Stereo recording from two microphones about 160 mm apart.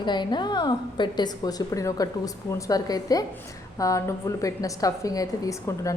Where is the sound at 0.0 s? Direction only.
30° left (ahead or behind).